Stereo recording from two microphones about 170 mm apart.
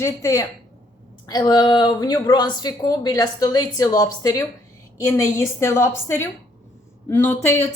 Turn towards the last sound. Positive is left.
turn(degrees=15)  # may be behind; listen again after turning